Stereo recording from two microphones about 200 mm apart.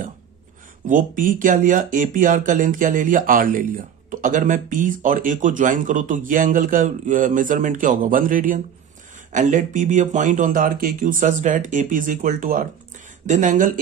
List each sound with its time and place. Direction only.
0.8 s speech: 40° right (ahead or behind)